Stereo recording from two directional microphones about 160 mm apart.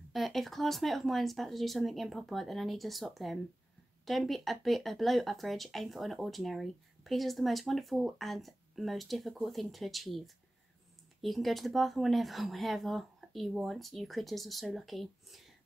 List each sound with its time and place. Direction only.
0.1 s speech: centre (ahead or behind)